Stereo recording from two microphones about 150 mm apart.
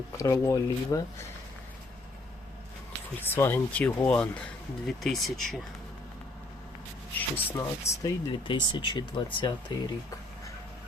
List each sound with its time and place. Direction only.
0.2 s speech: 20° left (ahead or behind)
3.2 s speech: 15° left (ahead or behind)
7.2 s speech: 10° left (ahead or behind)
8.0 s speech: 35° left (ahead or behind)